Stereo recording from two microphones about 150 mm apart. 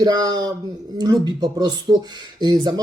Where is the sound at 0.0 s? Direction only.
30° right (ahead or behind).